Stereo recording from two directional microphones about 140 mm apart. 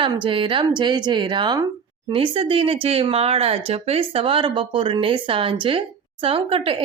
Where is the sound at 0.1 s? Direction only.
35° right (ahead or behind).